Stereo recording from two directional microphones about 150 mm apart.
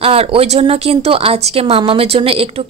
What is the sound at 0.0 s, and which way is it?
Speech, 40° right (ahead or behind).